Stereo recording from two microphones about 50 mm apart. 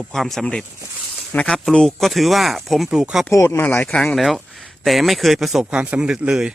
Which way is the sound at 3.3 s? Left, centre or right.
Left.